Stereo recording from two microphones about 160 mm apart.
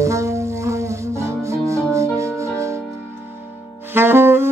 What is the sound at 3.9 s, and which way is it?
Saxophone, 15° right (ahead or behind).